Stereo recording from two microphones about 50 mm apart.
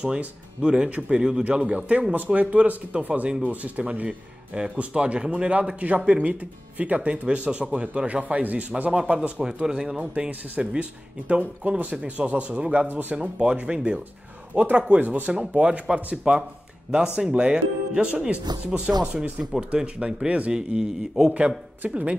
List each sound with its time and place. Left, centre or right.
0.0 s a man's voice: right
14.5 s speech: right
19.7 s a man's voice: centre
20.2 s speech: right
20.5 s a man's voice: centre
21.8 s speech: right